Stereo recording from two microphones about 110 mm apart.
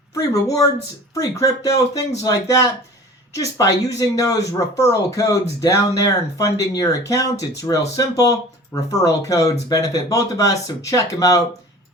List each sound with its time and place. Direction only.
0.1 s speech: 30° left (ahead or behind)